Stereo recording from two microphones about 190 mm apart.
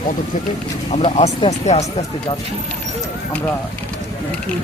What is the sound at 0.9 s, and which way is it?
Speech, 30° left (ahead or behind).